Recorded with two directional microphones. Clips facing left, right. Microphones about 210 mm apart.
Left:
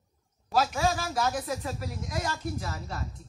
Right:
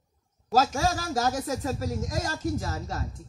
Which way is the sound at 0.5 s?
40° right (ahead or behind).